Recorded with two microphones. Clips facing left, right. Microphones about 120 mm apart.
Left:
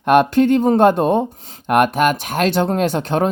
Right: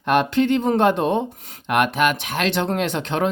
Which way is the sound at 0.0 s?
50° left (ahead or behind).